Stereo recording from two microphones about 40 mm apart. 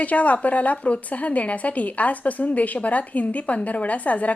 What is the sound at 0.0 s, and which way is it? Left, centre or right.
Speech, left.